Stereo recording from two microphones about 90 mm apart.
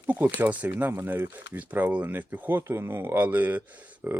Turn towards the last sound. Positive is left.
turn(degrees=-20)  # may be behind; listen again after turning